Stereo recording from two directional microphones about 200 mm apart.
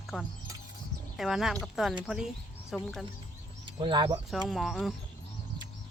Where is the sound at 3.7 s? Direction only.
25° right (ahead or behind).